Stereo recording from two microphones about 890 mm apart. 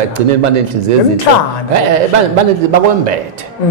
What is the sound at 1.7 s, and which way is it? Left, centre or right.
A man's voice, right.